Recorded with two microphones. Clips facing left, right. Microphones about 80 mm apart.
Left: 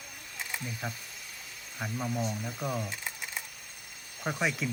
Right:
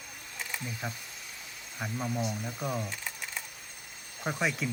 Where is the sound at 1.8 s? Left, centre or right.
Centre.